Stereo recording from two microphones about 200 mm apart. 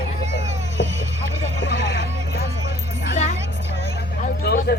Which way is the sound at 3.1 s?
35° left (ahead or behind).